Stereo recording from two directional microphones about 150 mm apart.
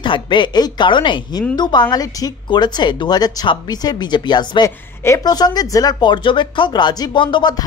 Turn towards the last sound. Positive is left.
turn(degrees=30)  # may be behind; listen again after turning